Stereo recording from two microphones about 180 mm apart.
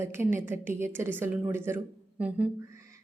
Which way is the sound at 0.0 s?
15° right (ahead or behind).